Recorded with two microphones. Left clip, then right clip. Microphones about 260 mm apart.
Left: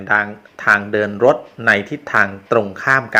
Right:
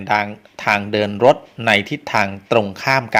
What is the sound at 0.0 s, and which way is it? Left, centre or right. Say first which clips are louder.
Speech: left 2 dB; right.